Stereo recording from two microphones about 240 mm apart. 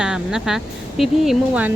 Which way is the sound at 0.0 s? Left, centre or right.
Centre.